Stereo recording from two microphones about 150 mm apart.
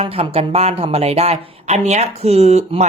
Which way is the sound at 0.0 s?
40° right (ahead or behind).